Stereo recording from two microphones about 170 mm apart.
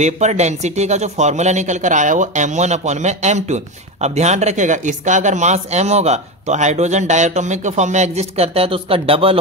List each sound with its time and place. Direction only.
0.0 s a man's voice: 40° right (ahead or behind)